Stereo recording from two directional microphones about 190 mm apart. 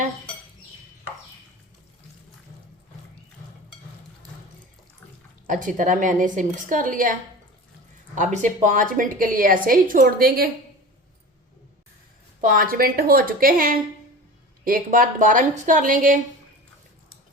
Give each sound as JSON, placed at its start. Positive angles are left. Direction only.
{"t": 5.5, "sound": "a woman's voice", "side_deg": -40}
{"t": 8.1, "sound": "a woman's voice", "side_deg": -40}
{"t": 12.4, "sound": "a woman's voice", "side_deg": -45}